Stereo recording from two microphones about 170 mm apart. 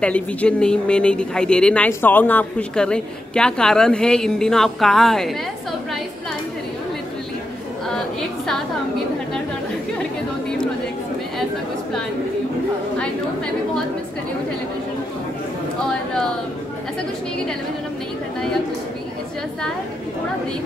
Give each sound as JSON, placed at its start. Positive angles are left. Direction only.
{"t": 0.0, "sound": "speech", "side_deg": 5}
{"t": 7.9, "sound": "speech", "side_deg": 0}